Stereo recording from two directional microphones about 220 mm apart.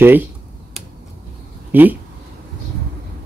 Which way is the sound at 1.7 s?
10° right (ahead or behind).